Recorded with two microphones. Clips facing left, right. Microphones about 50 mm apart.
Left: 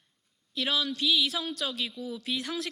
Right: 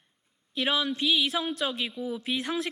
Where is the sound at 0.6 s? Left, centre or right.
Right.